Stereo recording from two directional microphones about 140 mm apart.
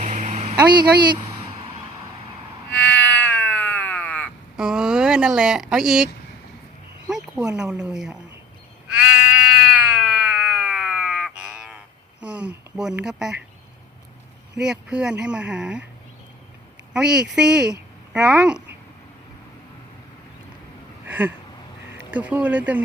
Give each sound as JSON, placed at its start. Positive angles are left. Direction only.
{"t": 0.0, "sound": "a sound", "side_deg": -60}
{"t": 0.5, "sound": "speech", "side_deg": -30}
{"t": 2.8, "sound": "cat", "side_deg": 10}
{"t": 4.5, "sound": "speech", "side_deg": -5}
{"t": 7.1, "sound": "speech", "side_deg": -5}
{"t": 9.1, "sound": "a sound", "side_deg": -5}
{"t": 12.2, "sound": "speech", "side_deg": -10}
{"t": 14.6, "sound": "speech", "side_deg": -5}
{"t": 16.9, "sound": "a child's voice", "side_deg": -5}
{"t": 21.1, "sound": "a sound", "side_deg": -10}
{"t": 21.9, "sound": "speech", "side_deg": -10}